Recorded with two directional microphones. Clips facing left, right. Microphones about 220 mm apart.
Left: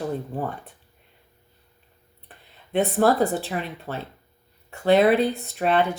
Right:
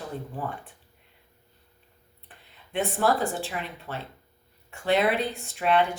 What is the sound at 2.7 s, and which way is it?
Speech, 40° left (ahead or behind).